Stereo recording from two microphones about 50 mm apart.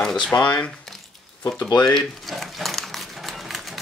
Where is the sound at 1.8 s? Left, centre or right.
Centre.